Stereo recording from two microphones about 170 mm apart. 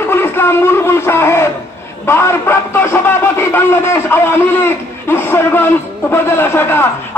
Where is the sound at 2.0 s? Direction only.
15° left (ahead or behind).